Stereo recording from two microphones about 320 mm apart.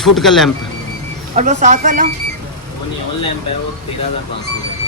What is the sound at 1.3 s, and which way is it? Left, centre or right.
Speech, right.